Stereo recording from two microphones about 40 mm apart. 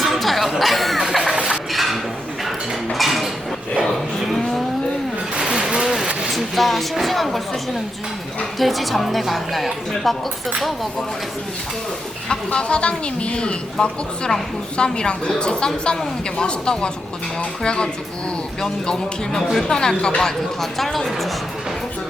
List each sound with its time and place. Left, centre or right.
0.0 s a sound: centre
1.1 s music: centre
1.7 s a sound: centre
3.8 s moo: centre
5.3 s vehicle: centre
6.3 s speech: centre
12.5 s speech: left
20.6 s speech: centre